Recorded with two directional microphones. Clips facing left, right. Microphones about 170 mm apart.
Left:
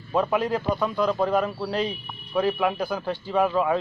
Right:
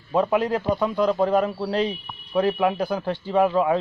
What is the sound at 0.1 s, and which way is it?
A man's voice, 20° right (ahead or behind).